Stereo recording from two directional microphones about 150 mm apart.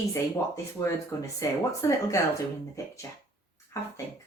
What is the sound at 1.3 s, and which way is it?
Speech, 20° left (ahead or behind).